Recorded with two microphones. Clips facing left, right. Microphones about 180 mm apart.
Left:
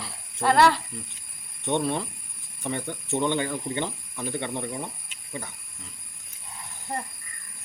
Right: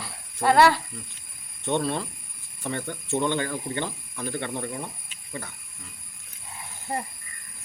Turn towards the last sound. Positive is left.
turn(degrees=-5)  # may be behind; listen again after turning